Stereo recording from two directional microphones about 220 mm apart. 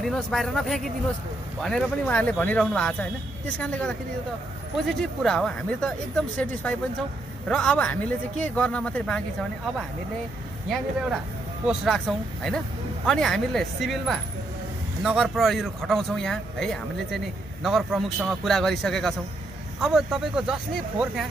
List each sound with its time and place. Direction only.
0.0 s speech: centre (ahead or behind)
5.2 s speech: 5° left (ahead or behind)
10.7 s speech: 5° right (ahead or behind)